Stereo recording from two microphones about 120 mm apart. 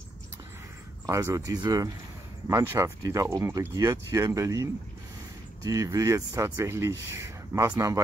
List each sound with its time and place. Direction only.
1.0 s speech: 25° right (ahead or behind)